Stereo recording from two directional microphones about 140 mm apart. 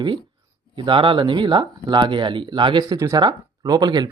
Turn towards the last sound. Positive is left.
turn(degrees=-30)  # may be behind; listen again after turning